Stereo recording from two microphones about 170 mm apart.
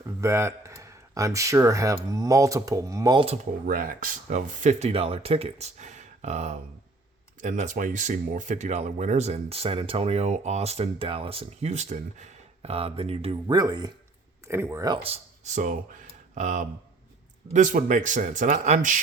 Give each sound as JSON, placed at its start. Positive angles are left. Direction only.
{"t": 0.0, "sound": "speech", "side_deg": -15}
{"t": 3.2, "sound": "speech", "side_deg": -50}
{"t": 13.6, "sound": "speech", "side_deg": -25}
{"t": 15.0, "sound": "speech", "side_deg": -40}